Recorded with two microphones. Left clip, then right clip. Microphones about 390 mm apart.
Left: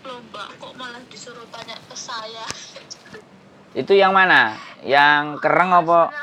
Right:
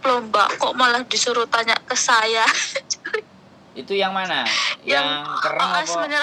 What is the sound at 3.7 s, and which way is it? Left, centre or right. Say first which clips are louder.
Speech: left 8 dB; left.